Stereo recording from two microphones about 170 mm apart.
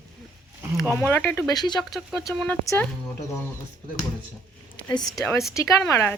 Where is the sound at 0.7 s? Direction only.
Centre (ahead or behind).